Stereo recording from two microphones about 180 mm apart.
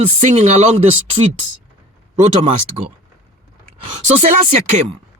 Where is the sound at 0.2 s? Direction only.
45° right (ahead or behind).